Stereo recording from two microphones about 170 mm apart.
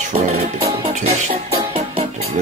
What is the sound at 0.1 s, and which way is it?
Music, 45° right (ahead or behind).